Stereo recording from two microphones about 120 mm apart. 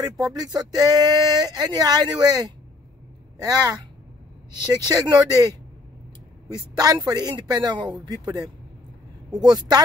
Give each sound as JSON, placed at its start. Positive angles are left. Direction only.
{"t": 0.3, "sound": "speech", "side_deg": -30}